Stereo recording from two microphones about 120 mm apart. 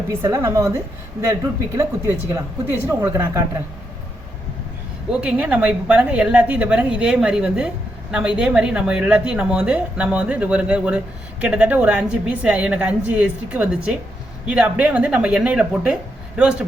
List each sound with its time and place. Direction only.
0.1 s speech: 25° right (ahead or behind)
5.2 s speech: 10° right (ahead or behind)